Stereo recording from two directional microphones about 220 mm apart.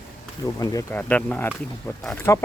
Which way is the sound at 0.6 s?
10° left (ahead or behind).